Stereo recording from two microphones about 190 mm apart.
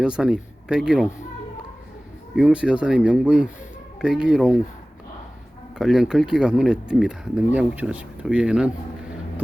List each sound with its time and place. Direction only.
0.0 s speech: 5° right (ahead or behind)
2.3 s speech: 5° right (ahead or behind)
5.7 s speech: 5° right (ahead or behind)